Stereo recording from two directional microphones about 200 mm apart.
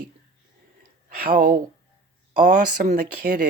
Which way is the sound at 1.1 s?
45° right (ahead or behind).